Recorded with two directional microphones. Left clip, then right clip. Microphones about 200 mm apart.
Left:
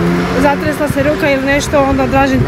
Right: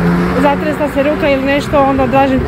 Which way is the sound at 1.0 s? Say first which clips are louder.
Even; 5° right (ahead or behind).